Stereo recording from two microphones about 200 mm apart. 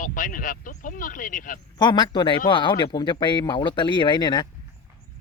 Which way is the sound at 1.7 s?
20° left (ahead or behind).